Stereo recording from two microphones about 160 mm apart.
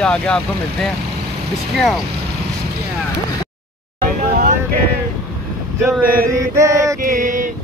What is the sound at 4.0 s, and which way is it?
Vehicle, 60° right (ahead or behind).